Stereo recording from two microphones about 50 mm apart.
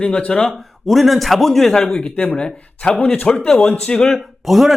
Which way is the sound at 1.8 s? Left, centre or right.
Centre.